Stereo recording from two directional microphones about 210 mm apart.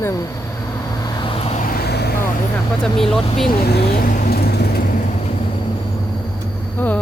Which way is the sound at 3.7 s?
45° left (ahead or behind).